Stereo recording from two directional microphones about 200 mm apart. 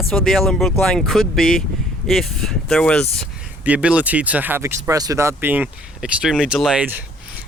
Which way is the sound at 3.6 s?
5° right (ahead or behind).